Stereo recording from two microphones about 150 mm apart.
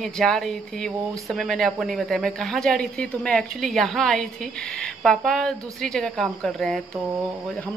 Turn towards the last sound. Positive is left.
turn(degrees=-15)  # may be behind; listen again after turning